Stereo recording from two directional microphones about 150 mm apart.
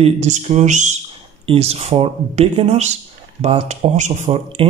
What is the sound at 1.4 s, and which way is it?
Speech, 40° right (ahead or behind).